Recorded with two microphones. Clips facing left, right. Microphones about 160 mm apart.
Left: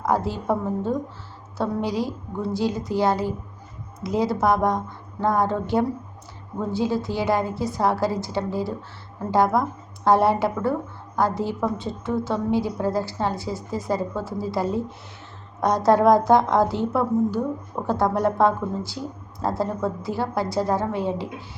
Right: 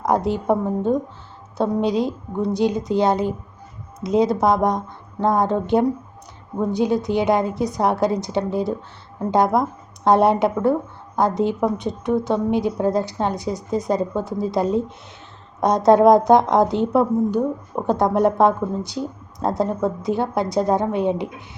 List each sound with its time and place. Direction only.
0.0 s a woman's voice: 20° right (ahead or behind)